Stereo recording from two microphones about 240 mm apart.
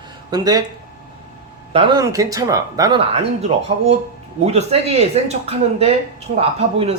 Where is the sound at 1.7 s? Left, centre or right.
Right.